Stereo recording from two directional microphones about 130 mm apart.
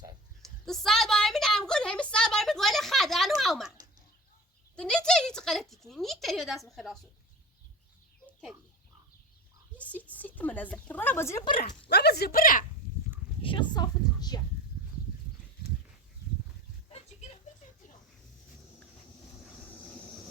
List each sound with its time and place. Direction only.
0.4 s a sound: 5° left (ahead or behind)
4.8 s speech: 5° left (ahead or behind)
9.7 s speech: 10° left (ahead or behind)
12.3 s speech: 90° left
13.4 s a woman's voice: 40° left (ahead or behind)